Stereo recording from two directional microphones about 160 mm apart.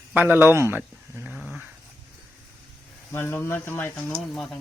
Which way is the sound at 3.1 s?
15° left (ahead or behind).